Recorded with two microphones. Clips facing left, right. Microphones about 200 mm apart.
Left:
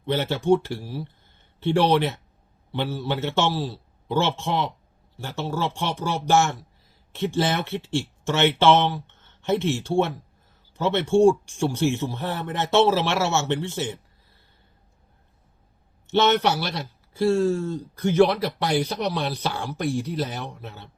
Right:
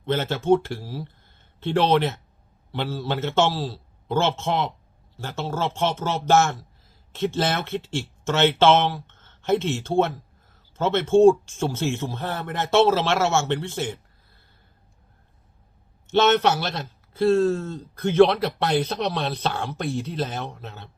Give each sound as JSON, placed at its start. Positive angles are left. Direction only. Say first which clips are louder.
{"t": 0.1, "sound": "speech", "louder": "even", "side_deg": 15}
{"t": 9.0, "sound": "a sound", "louder": "right 2 dB", "side_deg": 15}
{"t": 10.8, "sound": "speech", "louder": "right 2 dB", "side_deg": 15}
{"t": 16.0, "sound": "speech", "louder": "right 1 dB", "side_deg": 15}